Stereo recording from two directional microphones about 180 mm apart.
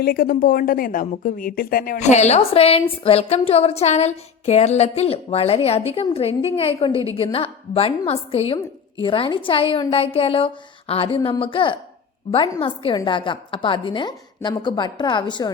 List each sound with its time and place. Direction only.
0.0 s a woman's voice: 55° left (ahead or behind); by 2.8 s 35° left (ahead or behind)
3.0 s a sound: 35° left (ahead or behind)
9.0 s speech: 30° left (ahead or behind)